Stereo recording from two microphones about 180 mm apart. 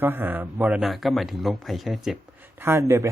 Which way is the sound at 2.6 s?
15° right (ahead or behind).